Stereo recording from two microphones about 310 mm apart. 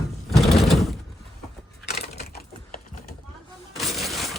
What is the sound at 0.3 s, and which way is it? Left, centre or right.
Sewing machine, centre.